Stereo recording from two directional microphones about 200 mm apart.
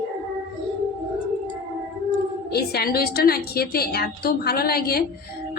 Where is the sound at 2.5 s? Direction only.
55° left (ahead or behind).